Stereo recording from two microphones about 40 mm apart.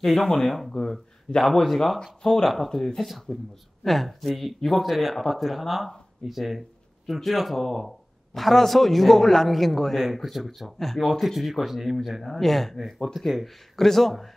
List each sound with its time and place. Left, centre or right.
0.0 s speech: centre
0.7 s speech: centre
1.4 s speech: centre